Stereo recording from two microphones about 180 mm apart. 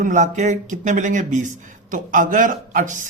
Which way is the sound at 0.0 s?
45° right (ahead or behind).